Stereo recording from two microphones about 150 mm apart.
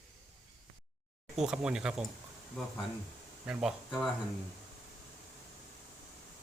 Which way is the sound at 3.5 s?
5° right (ahead or behind).